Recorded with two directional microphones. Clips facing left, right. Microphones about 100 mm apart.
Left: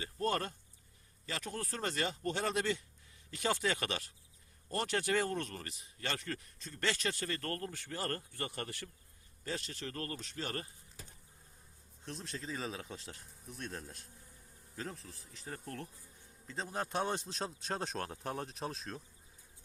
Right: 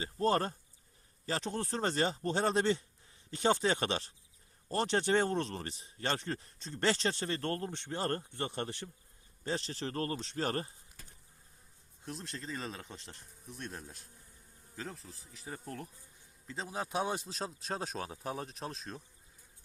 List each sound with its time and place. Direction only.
0.0 s a man's voice: 30° right (ahead or behind)
12.0 s speech: centre (ahead or behind)
16.5 s speech: centre (ahead or behind)